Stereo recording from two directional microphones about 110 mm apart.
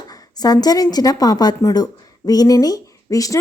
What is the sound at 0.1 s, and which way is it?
A woman's voice, 35° left (ahead or behind).